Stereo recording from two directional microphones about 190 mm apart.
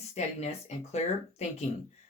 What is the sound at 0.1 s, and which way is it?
Speech, 35° left (ahead or behind).